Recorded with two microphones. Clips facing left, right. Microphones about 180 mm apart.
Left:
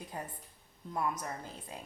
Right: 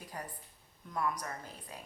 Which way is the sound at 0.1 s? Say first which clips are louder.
Even; 25° left (ahead or behind).